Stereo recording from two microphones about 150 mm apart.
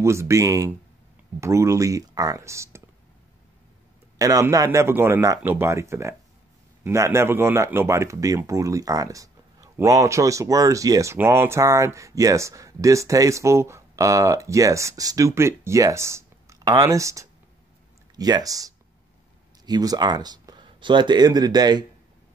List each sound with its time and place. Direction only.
0.0 s speech: 20° right (ahead or behind)
4.2 s speech: 20° right (ahead or behind)